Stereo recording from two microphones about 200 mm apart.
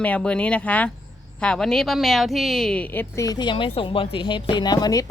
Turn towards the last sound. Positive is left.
turn(degrees=20)  # may be behind; listen again after turning